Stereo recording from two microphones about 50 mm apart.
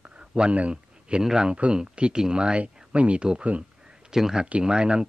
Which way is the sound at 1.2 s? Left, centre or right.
Centre.